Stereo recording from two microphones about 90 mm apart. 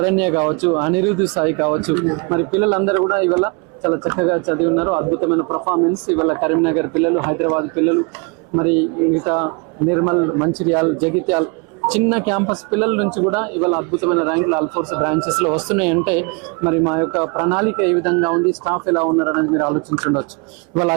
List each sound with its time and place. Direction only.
0.0 s speech: 15° right (ahead or behind)